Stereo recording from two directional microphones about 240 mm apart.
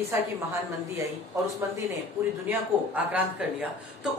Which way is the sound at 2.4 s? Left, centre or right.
Centre.